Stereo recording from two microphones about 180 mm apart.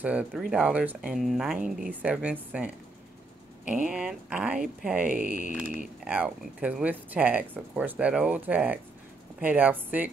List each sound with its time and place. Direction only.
0.0 s speech: 5° right (ahead or behind)
3.8 s speech: 5° right (ahead or behind)
5.0 s speech: 50° right (ahead or behind)
5.8 s speech: 10° right (ahead or behind)